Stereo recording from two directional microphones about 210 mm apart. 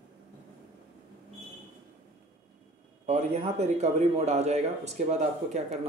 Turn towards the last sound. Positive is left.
turn(degrees=-35)  # may be behind; listen again after turning